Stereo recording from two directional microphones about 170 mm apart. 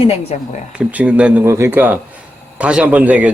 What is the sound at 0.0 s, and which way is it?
Speech, 35° left (ahead or behind).